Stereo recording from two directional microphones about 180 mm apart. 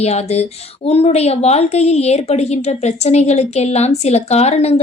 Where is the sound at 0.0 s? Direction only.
35° left (ahead or behind).